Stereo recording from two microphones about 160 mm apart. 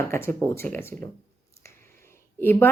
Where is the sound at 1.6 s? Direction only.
15° left (ahead or behind).